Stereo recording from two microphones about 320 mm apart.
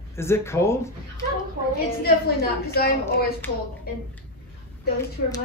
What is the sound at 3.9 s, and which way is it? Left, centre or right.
Speech, left.